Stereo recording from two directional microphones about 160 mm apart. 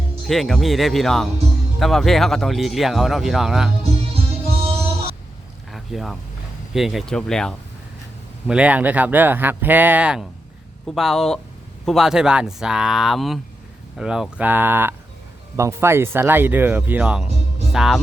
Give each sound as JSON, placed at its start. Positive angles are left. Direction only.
{"t": 0.3, "sound": "speech", "side_deg": 0}
{"t": 4.1, "sound": "music", "side_deg": -35}
{"t": 5.7, "sound": "a sound", "side_deg": 0}
{"t": 6.7, "sound": "speech", "side_deg": 0}
{"t": 8.4, "sound": "speech", "side_deg": -5}